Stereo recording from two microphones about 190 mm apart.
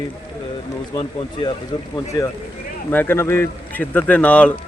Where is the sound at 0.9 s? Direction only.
25° left (ahead or behind).